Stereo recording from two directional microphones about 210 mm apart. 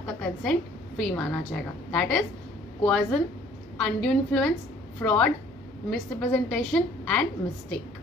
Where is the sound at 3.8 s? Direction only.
5° left (ahead or behind).